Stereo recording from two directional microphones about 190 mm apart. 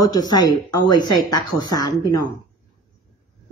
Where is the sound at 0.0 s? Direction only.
20° left (ahead or behind).